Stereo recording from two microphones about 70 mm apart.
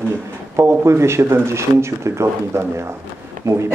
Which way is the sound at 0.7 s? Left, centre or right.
Right.